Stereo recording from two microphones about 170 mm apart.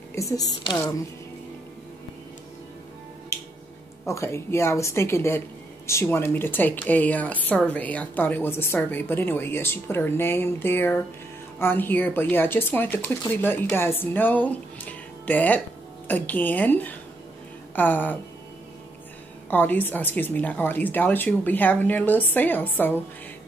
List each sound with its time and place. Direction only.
0.1 s a woman's voice: 20° left (ahead or behind)
3.3 s finger snapping: 15° left (ahead or behind)
4.1 s a woman's voice: 15° left (ahead or behind)
19.5 s a woman's voice: 10° left (ahead or behind)